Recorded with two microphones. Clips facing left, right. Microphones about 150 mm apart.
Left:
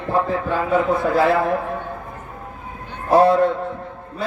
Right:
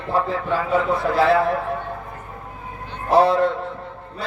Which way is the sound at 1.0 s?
50° left (ahead or behind).